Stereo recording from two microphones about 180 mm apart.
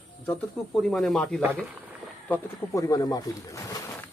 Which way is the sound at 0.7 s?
Centre (ahead or behind).